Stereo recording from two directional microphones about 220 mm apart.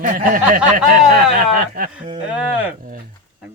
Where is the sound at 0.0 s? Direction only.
40° right (ahead or behind).